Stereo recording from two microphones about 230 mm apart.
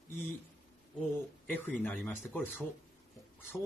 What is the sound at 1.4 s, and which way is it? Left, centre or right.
Speech, centre.